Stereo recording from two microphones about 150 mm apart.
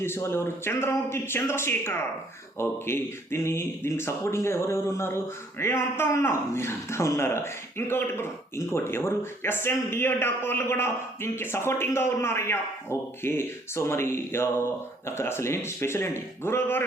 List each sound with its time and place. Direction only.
0.0 s speech: 15° left (ahead or behind)